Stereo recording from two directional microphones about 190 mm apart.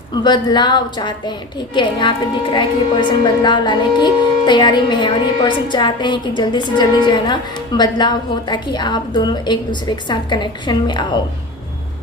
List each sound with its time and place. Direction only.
0.2 s a woman's voice: 25° left (ahead or behind)